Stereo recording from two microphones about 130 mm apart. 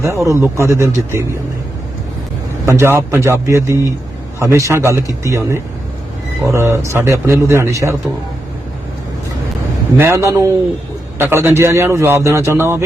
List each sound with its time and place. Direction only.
0.0 s a man's voice: 25° right (ahead or behind)
2.6 s a man's voice: 20° right (ahead or behind)
10.0 s a man's voice: 20° right (ahead or behind)